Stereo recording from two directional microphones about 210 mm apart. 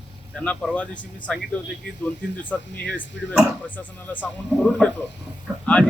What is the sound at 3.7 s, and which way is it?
Speech, 10° left (ahead or behind).